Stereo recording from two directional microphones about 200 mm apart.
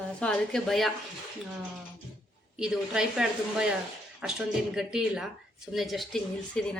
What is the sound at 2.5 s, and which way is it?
Speech, 5° right (ahead or behind).